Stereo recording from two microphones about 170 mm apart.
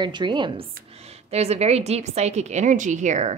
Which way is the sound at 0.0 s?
25° right (ahead or behind).